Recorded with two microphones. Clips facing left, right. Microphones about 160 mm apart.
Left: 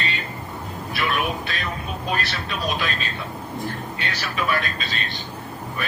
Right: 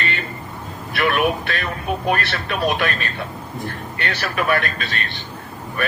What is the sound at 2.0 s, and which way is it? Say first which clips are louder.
Speech: right 4 dB; 60° right (ahead or behind).